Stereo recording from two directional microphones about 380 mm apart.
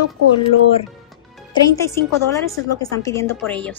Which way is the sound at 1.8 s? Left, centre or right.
Centre.